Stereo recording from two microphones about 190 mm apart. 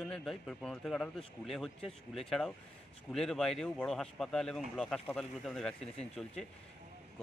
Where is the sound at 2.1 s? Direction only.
Centre (ahead or behind).